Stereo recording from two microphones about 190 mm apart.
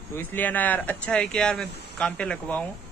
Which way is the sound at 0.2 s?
10° left (ahead or behind).